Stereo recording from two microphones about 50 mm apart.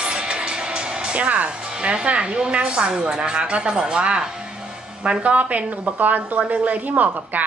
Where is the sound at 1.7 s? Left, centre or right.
Centre.